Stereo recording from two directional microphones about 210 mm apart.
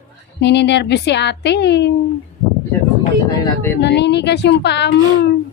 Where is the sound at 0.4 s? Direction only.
55° left (ahead or behind).